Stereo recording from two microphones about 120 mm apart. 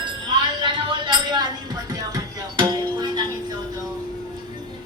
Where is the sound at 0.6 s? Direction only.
45° right (ahead or behind).